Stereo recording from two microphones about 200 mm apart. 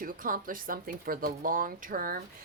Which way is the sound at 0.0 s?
45° right (ahead or behind).